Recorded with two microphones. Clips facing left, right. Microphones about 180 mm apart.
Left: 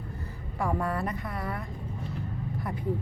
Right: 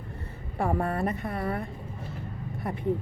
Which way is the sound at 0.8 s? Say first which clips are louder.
Right 2 dB; 25° right (ahead or behind).